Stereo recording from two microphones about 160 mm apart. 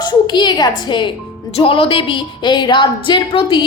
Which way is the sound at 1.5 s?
35° left (ahead or behind).